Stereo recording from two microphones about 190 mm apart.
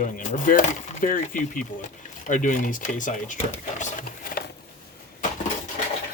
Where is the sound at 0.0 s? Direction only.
40° left (ahead or behind).